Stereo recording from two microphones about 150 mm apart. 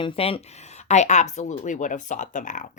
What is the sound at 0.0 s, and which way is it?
Speech, 40° left (ahead or behind).